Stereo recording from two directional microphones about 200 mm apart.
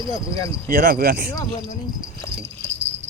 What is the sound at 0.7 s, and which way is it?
Speech, 45° right (ahead or behind).